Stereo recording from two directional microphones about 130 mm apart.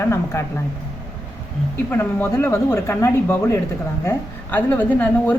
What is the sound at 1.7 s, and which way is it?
A woman's voice, 15° left (ahead or behind).